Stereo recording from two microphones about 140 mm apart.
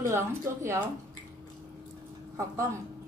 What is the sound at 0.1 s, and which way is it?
Speech, 20° right (ahead or behind).